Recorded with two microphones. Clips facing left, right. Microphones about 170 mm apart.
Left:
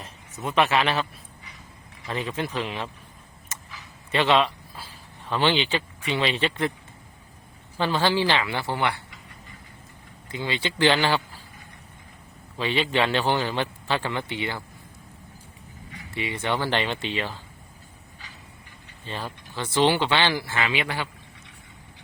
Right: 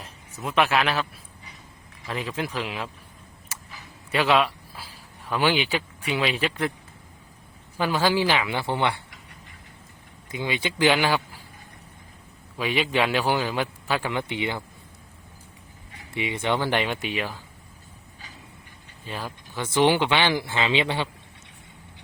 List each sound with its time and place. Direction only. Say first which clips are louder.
0.0 s speech: left 1 dB; centre (ahead or behind)
2.0 s speech: left 1 dB; centre (ahead or behind)
4.1 s speech: even; 5° right (ahead or behind)
7.8 s a man's voice: even; 10° right (ahead or behind)
10.3 s a man's voice: right 1 dB; 15° right (ahead or behind)
12.5 s a man's voice: even; 10° right (ahead or behind)
16.1 s a man's voice: right 2 dB; 20° right (ahead or behind)
19.0 s a man's voice: even; 10° right (ahead or behind)